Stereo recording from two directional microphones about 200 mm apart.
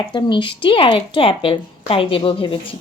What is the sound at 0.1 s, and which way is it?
A woman's voice, 25° left (ahead or behind).